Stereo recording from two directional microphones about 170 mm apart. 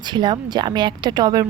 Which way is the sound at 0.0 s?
25° right (ahead or behind).